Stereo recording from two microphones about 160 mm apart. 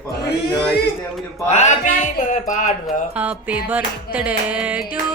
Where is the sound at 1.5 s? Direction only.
45° left (ahead or behind).